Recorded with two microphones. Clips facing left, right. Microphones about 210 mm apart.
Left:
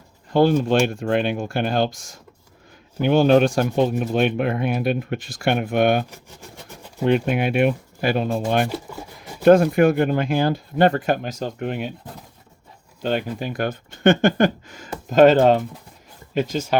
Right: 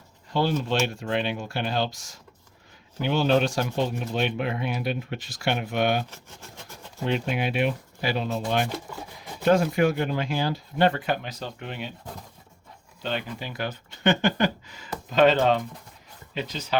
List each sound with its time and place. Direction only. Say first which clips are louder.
0.3 s speech: left 8 dB; 50° left (ahead or behind)
13.0 s speech: left 7 dB; 45° left (ahead or behind)